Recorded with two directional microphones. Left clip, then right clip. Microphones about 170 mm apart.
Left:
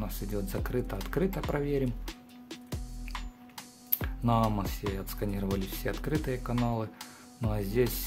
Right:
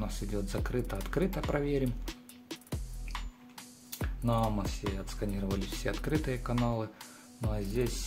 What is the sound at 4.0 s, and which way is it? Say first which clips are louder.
Music: left 3 dB; 25° left (ahead or behind).